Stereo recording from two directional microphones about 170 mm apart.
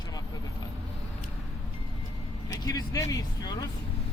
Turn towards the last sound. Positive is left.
turn(degrees=20)  # may be behind; listen again after turning